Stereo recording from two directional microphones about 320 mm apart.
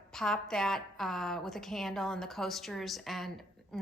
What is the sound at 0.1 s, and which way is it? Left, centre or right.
A woman's voice, centre.